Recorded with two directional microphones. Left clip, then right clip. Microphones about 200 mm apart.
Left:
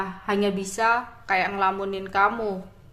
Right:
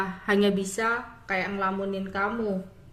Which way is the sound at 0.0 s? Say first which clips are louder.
Right 1 dB; centre (ahead or behind).